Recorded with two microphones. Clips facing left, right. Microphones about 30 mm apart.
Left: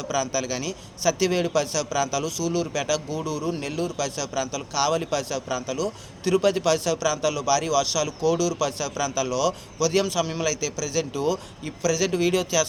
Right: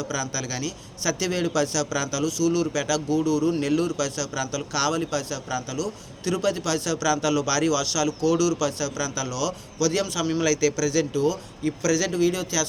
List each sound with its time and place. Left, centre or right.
0.1 s a man's voice: left; by 3.9 s centre
3.9 s a man's voice: left
4.9 s a man's voice: left
6.8 s a man's voice: centre
8.5 s a man's voice: left
12.1 s speech: left